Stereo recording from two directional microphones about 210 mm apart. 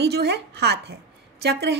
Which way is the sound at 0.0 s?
50° right (ahead or behind).